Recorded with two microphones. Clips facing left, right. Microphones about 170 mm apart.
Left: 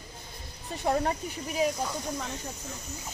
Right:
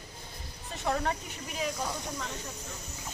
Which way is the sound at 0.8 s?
30° left (ahead or behind).